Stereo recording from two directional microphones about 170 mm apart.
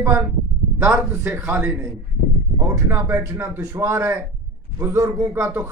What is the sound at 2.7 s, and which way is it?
A man's voice, 15° right (ahead or behind).